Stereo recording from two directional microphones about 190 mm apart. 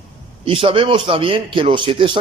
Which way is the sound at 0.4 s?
30° right (ahead or behind).